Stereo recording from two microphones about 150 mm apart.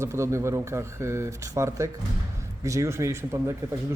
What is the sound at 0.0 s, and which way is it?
A man's voice, 20° right (ahead or behind).